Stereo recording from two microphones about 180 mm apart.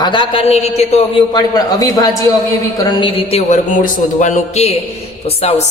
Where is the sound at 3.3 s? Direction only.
35° left (ahead or behind).